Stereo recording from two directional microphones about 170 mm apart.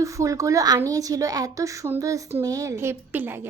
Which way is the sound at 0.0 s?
20° right (ahead or behind).